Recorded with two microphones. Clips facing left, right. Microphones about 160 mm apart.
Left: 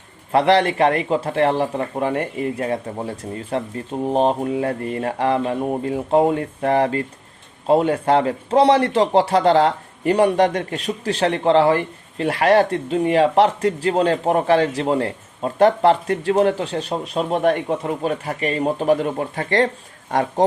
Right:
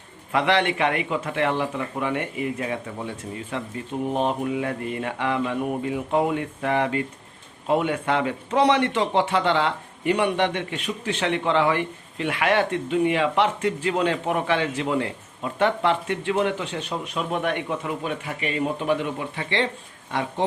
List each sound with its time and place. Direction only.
0.3 s speech: 35° left (ahead or behind)